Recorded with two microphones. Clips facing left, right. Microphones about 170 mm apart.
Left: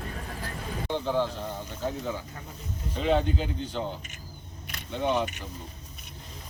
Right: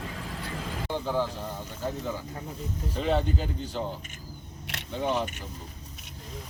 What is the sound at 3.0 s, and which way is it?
Speech, 5° right (ahead or behind).